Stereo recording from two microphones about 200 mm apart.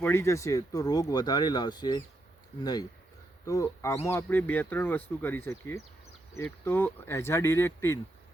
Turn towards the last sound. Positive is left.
turn(degrees=10)  # may be behind; listen again after turning